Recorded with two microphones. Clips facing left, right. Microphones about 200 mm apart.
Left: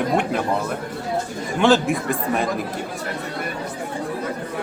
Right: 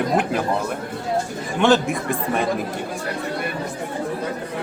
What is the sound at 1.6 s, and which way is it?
Speech, centre (ahead or behind).